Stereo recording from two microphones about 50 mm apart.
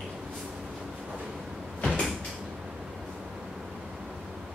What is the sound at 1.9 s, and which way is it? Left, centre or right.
Door, centre.